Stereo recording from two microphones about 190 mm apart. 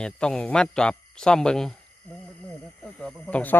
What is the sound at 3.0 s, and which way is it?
Speech, 5° left (ahead or behind).